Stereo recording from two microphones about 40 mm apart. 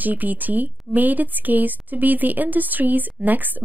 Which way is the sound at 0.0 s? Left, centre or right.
Right.